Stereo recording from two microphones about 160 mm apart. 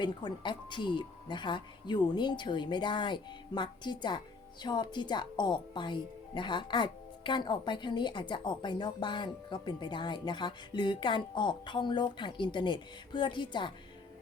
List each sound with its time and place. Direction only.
0.0 s speech: 30° left (ahead or behind)